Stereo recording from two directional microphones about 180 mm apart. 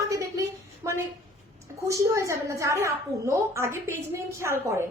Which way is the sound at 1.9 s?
15° right (ahead or behind).